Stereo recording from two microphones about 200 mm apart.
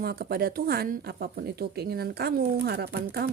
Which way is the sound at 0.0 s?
50° right (ahead or behind).